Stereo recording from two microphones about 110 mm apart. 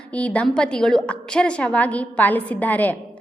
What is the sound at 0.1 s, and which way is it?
A woman's voice, 10° left (ahead or behind).